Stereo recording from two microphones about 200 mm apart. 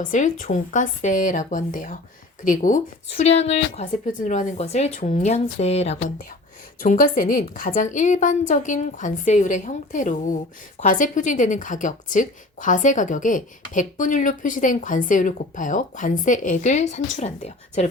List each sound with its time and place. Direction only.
0.0 s a woman's voice: 40° left (ahead or behind)